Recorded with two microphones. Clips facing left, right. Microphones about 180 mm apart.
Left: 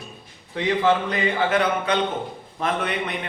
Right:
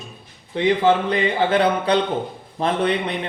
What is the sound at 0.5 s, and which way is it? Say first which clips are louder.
A man's voice: right 3 dB; 25° right (ahead or behind).